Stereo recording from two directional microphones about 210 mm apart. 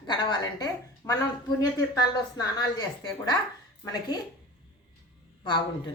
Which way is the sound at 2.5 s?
20° left (ahead or behind).